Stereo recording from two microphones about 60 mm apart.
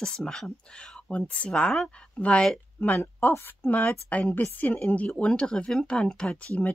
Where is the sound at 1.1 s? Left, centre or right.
Left.